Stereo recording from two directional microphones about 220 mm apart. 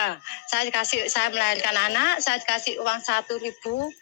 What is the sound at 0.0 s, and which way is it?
A woman's voice, 50° left (ahead or behind).